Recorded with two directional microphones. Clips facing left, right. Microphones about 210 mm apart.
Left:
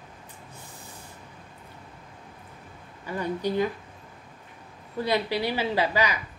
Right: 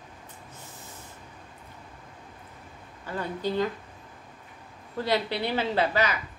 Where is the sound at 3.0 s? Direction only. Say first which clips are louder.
Left 2 dB; 15° left (ahead or behind).